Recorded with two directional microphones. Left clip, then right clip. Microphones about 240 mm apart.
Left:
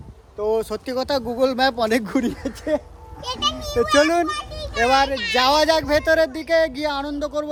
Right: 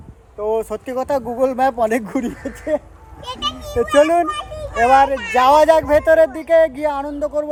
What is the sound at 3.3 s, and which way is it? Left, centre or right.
Speech, left.